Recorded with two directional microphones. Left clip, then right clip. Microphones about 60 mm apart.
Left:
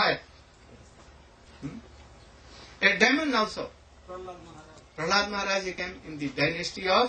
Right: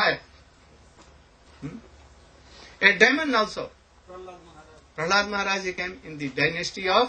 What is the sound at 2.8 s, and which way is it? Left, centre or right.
Speech, right.